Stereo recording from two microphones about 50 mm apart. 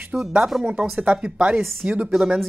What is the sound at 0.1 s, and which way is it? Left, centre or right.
Speech, right.